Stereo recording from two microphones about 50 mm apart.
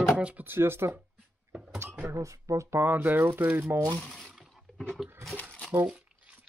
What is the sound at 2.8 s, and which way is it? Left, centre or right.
Speech, right.